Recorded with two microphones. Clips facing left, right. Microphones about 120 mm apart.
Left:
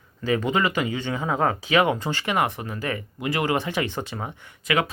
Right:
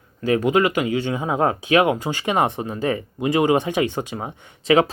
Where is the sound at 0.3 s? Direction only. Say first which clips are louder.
Right 5 dB; 15° right (ahead or behind).